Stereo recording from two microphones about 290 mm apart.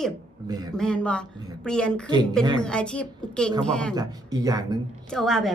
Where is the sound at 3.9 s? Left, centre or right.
Centre.